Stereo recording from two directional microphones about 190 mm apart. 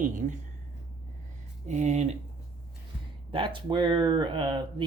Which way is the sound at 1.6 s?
40° right (ahead or behind).